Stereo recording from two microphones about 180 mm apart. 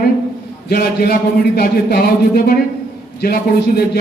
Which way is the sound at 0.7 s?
60° left (ahead or behind).